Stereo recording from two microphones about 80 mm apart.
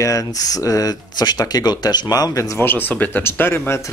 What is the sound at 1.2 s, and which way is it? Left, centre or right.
Speech, left.